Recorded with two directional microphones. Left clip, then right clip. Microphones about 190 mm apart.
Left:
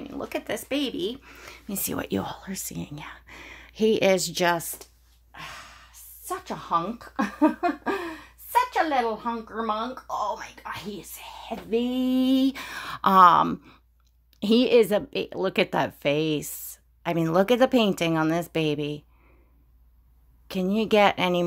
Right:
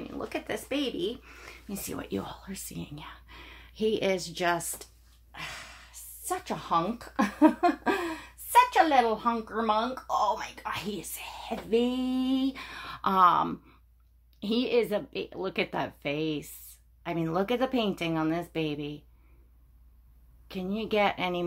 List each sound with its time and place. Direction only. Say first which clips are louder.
0.1 s speech: left 4 dB; 35° left (ahead or behind); by 4.6 s 55° left (ahead or behind)
4.6 s speech: left 3 dB; 35° left (ahead or behind)
5.3 s a woman's voice: even; 15° left (ahead or behind)
11.8 s speech: left 4 dB; 35° left (ahead or behind); by 18.9 s 50° left (ahead or behind)
20.4 s speech: left 8 dB; 50° left (ahead or behind)